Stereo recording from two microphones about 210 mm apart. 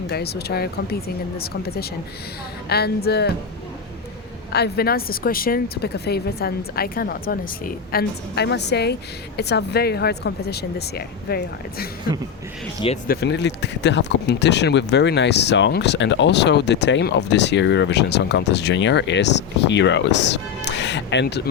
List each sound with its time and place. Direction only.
0.1 s speech: 50° left (ahead or behind)
4.5 s speech: 50° left (ahead or behind)
13.1 s speech: 50° left (ahead or behind)